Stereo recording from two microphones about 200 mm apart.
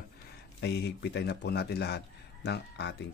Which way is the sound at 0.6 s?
60° left (ahead or behind).